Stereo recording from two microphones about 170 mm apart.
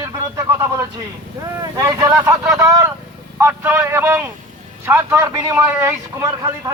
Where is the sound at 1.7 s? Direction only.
20° right (ahead or behind).